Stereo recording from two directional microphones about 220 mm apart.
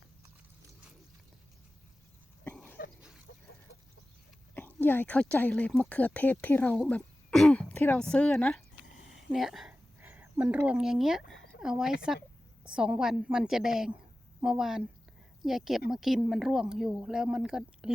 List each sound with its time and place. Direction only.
2.4 s cough: 10° left (ahead or behind)
3.3 s chicken: 65° left (ahead or behind)
4.5 s speech: 10° left (ahead or behind)
9.1 s a sound: centre (ahead or behind)
11.6 s speech: centre (ahead or behind)